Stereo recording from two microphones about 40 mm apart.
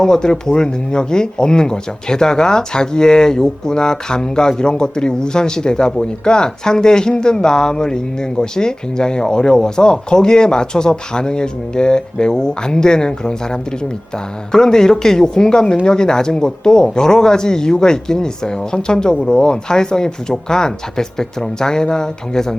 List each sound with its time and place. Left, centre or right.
0.0 s speech: centre